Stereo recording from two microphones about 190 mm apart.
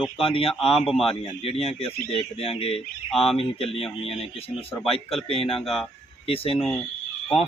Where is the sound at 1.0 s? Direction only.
30° left (ahead or behind).